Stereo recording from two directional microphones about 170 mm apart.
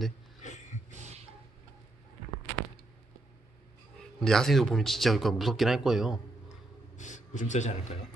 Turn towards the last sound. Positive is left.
turn(degrees=45)  # may be behind; listen again after turning